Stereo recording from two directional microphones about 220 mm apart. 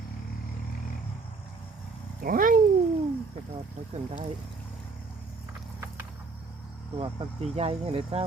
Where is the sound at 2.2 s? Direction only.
40° right (ahead or behind).